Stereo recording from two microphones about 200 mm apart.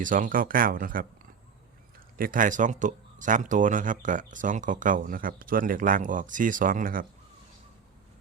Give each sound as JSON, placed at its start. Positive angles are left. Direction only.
{"t": 0.0, "sound": "speech", "side_deg": -40}
{"t": 2.1, "sound": "speech", "side_deg": -45}